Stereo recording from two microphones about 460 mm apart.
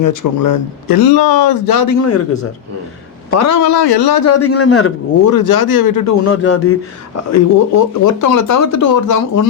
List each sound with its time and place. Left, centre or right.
0.0 s a man's voice: left
3.7 s speech: left
4.3 s a man's voice: left
7.3 s a man's voice: left